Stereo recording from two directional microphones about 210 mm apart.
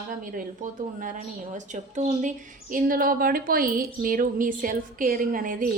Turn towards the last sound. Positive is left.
turn(degrees=-40)  # may be behind; listen again after turning